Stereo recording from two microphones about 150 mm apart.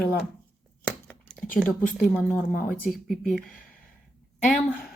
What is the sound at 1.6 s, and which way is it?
Speech, 10° left (ahead or behind).